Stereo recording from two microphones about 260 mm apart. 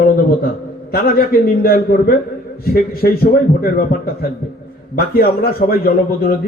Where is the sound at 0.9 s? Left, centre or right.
Left.